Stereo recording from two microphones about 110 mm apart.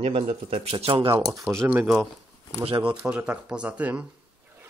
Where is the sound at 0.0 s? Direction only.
60° right (ahead or behind).